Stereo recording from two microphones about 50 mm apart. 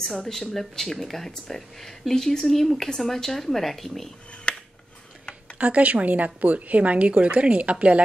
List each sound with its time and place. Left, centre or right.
0.2 s speech: centre
4.5 s a sound: left
5.6 s speech: right